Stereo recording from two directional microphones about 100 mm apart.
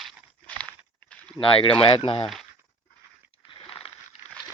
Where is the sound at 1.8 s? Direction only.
65° left (ahead or behind).